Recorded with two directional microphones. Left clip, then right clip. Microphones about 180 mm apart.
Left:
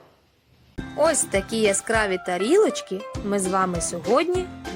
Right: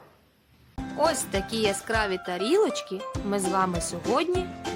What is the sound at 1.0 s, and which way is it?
Speech, 15° left (ahead or behind).